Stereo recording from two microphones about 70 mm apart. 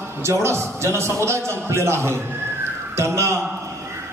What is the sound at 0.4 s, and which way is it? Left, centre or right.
A man's voice, right.